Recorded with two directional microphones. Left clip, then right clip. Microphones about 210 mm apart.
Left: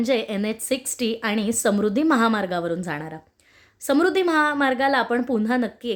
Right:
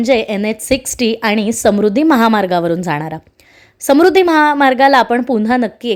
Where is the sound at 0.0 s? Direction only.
25° right (ahead or behind).